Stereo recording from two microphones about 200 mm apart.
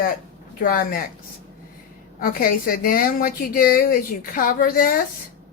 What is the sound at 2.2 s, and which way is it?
A child's voice, 45° left (ahead or behind).